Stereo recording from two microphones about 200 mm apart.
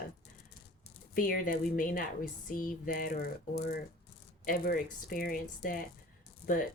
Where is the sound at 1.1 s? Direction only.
45° left (ahead or behind).